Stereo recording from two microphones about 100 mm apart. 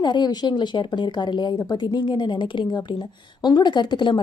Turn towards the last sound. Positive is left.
turn(degrees=50)  # may be behind; listen again after turning